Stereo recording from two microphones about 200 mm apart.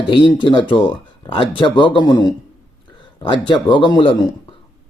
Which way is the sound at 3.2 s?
25° left (ahead or behind).